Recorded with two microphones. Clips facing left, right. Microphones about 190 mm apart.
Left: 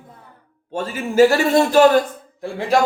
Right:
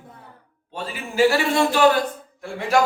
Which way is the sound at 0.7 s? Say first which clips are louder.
Left 8 dB; 45° left (ahead or behind).